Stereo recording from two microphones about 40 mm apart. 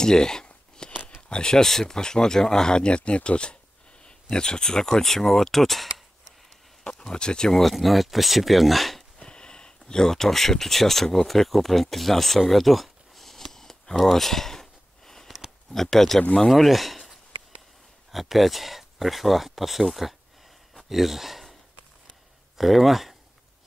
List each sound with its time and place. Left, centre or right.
0.0 s speech: centre
0.8 s a sound: left
1.3 s speech: left; by 6.3 s centre
6.8 s speech: left
7.5 s speech: centre
9.2 s speech: left
14.0 s a sound: centre
15.7 s speech: centre
20.7 s a sound: centre
22.6 s speech: centre